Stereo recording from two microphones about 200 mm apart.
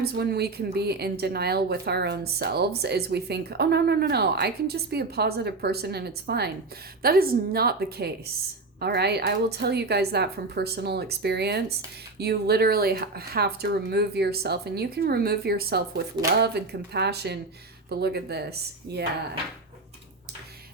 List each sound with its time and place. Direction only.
0.0 s a woman's voice: 55° right (ahead or behind)
16.2 s speech: 20° right (ahead or behind)
16.6 s a woman's voice: 55° right (ahead or behind)